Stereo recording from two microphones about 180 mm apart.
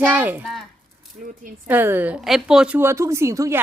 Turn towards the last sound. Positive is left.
turn(degrees=-15)  # may be behind; listen again after turning